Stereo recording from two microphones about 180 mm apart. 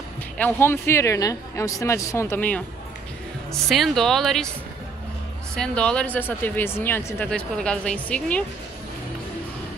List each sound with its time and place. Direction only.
0.4 s speech: 10° left (ahead or behind)
3.6 s speech: centre (ahead or behind)
5.6 s speech: 5° left (ahead or behind)